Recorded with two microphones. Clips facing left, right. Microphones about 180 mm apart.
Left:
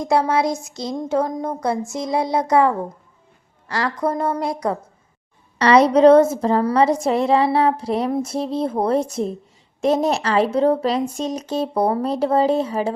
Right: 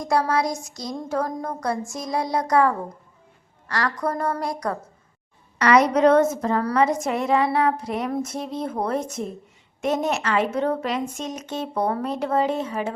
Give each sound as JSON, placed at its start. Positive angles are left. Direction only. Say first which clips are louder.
{"t": 0.0, "sound": "a woman's voice", "louder": "left 4 dB", "side_deg": 25}